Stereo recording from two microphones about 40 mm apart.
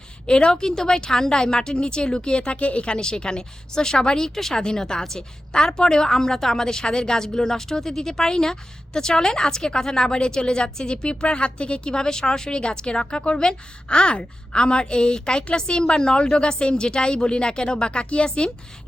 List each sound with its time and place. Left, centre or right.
0.3 s a woman's voice: left